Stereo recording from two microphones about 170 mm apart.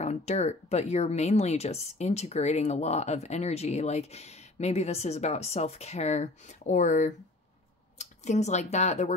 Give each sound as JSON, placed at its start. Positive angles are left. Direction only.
{"t": 0.0, "sound": "speech", "side_deg": 40}